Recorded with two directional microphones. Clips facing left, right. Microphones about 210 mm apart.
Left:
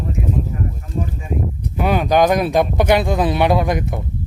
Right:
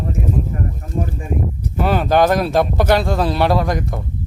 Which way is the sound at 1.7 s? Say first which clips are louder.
Even; 15° left (ahead or behind).